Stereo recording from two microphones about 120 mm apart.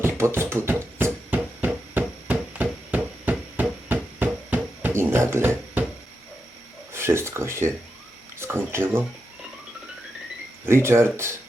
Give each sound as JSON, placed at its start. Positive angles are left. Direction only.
{"t": 0.0, "sound": "music", "side_deg": -20}
{"t": 6.9, "sound": "speech", "side_deg": -20}
{"t": 10.7, "sound": "speech", "side_deg": -20}